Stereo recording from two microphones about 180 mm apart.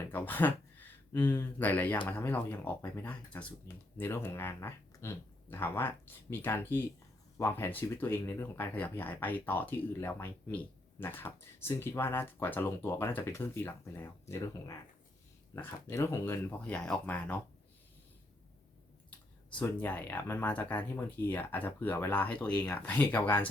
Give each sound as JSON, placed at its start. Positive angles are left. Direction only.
{"t": 0.0, "sound": "speech", "side_deg": 10}
{"t": 19.5, "sound": "speech", "side_deg": 10}